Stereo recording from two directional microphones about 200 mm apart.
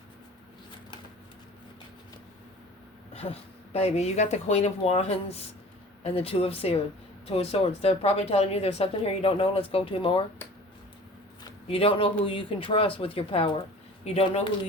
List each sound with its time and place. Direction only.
3.1 s speech: 30° left (ahead or behind)
11.7 s speech: 30° left (ahead or behind)